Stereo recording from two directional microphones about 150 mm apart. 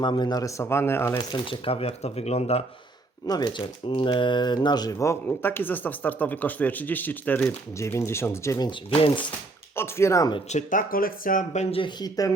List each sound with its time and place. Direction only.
0.0 s speech: 30° left (ahead or behind); by 1.2 s 15° left (ahead or behind)
1.2 s speech: 35° left (ahead or behind)
3.2 s speech: 25° left (ahead or behind)
9.0 s speech: 35° left (ahead or behind)
9.7 s speech: 15° left (ahead or behind)
10.5 s speech: 60° left (ahead or behind)
11.8 s speech: 30° left (ahead or behind)